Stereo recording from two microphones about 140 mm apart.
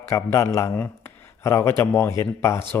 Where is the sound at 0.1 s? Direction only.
20° left (ahead or behind).